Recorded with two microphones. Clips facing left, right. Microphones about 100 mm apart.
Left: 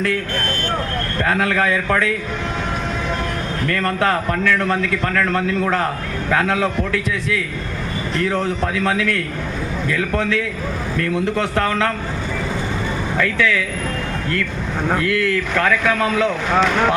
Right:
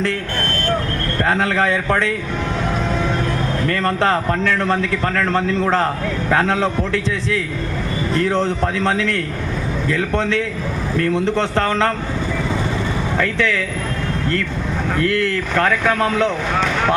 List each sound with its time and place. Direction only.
1.2 s a man's voice: 30° right (ahead or behind)
3.7 s a man's voice: 30° right (ahead or behind)
13.1 s a man's voice: 30° right (ahead or behind)
15.0 s a man's voice: 30° right (ahead or behind)